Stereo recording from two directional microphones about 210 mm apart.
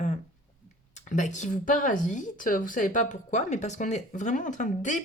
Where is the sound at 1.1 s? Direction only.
35° left (ahead or behind).